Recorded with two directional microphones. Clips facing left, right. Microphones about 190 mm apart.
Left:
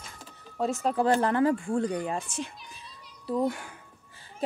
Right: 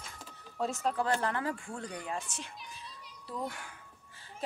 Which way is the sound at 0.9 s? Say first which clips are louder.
Left 8 dB; 20° left (ahead or behind).